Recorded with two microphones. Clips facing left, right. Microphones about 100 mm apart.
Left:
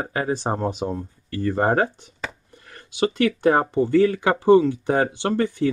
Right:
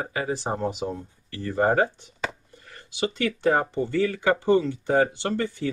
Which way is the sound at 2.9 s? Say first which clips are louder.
Left 6 dB; 55° left (ahead or behind).